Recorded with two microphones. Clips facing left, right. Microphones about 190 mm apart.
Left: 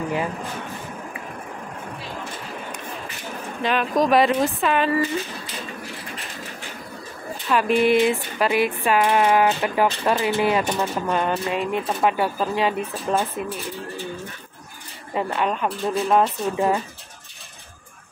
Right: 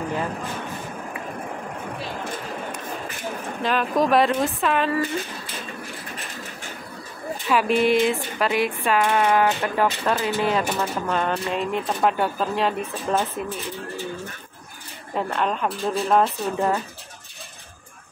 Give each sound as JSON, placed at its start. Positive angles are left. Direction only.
{"t": 3.6, "sound": "speech", "side_deg": 0}
{"t": 7.4, "sound": "speech", "side_deg": -5}
{"t": 15.1, "sound": "speech", "side_deg": 5}